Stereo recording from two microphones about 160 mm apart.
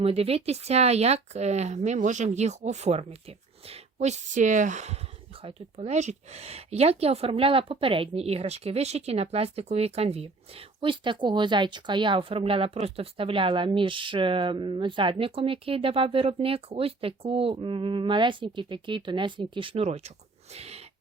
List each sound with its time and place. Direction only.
0.0 s speech: 40° right (ahead or behind)
5.4 s speech: 35° right (ahead or behind)